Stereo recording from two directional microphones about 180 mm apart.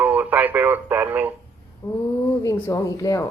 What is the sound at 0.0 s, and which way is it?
Speech, 10° right (ahead or behind).